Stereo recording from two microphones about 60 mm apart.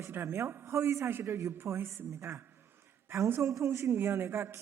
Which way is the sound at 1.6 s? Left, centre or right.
Right.